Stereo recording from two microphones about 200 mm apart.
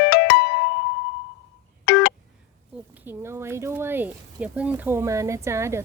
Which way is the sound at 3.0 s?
10° right (ahead or behind).